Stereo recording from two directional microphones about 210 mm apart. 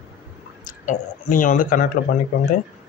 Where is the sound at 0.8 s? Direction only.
40° left (ahead or behind).